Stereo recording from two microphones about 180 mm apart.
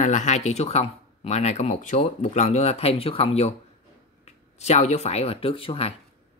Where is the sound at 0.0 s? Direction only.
40° left (ahead or behind).